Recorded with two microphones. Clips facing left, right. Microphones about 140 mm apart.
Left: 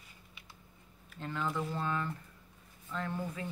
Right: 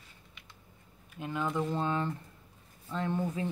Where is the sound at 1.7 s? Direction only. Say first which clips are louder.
Right 4 dB; 25° right (ahead or behind).